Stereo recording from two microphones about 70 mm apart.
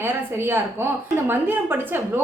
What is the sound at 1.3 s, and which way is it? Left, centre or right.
Speech, right.